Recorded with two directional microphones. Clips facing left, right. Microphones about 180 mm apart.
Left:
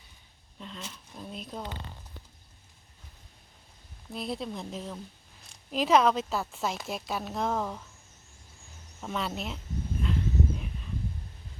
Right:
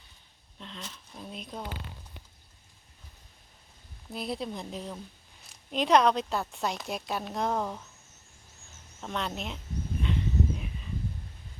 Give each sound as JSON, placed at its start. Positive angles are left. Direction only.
{"t": 0.6, "sound": "speech", "side_deg": 5}
{"t": 4.1, "sound": "a woman's voice", "side_deg": 0}
{"t": 9.0, "sound": "a woman's voice", "side_deg": 5}
{"t": 10.0, "sound": "a sound", "side_deg": 0}